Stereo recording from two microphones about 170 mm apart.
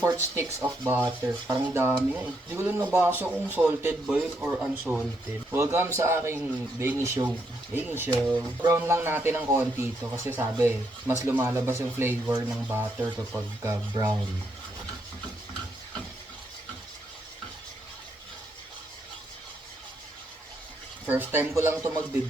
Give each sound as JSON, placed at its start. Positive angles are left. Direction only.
{"t": 0.3, "sound": "speech", "side_deg": -15}
{"t": 21.1, "sound": "speech", "side_deg": -10}